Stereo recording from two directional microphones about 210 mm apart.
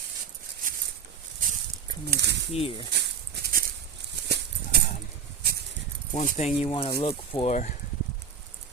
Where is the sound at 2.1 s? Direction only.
55° right (ahead or behind).